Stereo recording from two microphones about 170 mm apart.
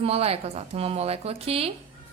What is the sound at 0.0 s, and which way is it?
A woman's voice, 35° right (ahead or behind).